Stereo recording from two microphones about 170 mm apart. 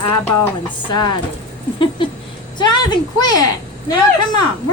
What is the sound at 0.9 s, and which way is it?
Speech, 25° left (ahead or behind).